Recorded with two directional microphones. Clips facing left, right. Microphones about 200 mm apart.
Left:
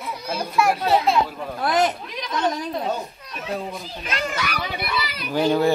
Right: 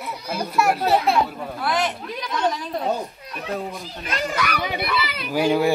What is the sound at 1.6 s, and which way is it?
Speech, 40° left (ahead or behind).